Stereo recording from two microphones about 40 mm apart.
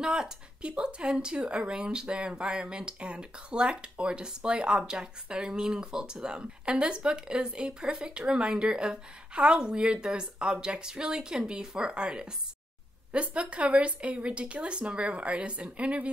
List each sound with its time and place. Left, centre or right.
0.0 s speech: centre